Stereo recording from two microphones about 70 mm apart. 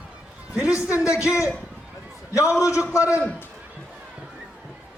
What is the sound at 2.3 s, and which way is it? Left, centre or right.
Speech, left.